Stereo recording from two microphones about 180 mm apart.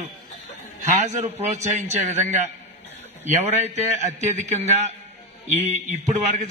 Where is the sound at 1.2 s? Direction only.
40° right (ahead or behind).